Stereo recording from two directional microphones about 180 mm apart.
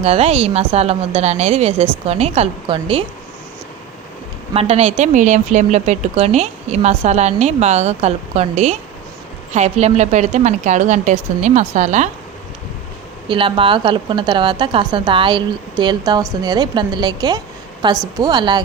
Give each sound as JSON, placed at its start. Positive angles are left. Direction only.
{"t": 0.0, "sound": "speech", "side_deg": -35}
{"t": 4.5, "sound": "speech", "side_deg": -35}
{"t": 13.2, "sound": "a woman's voice", "side_deg": -30}